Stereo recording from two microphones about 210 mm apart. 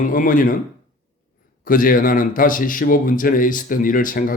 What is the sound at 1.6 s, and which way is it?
A man's voice, 40° left (ahead or behind).